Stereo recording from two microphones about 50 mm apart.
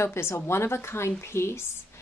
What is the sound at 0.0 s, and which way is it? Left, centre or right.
A woman's voice, left.